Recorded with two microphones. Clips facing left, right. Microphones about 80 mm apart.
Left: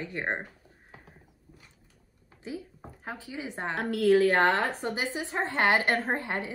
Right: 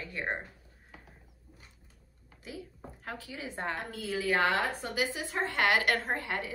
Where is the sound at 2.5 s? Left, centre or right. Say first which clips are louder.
Left 5 dB; left.